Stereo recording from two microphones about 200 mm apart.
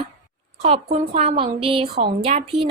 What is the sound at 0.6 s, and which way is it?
A woman's voice, 30° right (ahead or behind).